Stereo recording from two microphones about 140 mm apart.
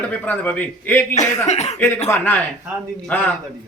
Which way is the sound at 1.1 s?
55° left (ahead or behind).